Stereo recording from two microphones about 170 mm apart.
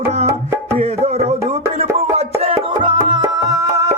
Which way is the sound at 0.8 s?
40° right (ahead or behind).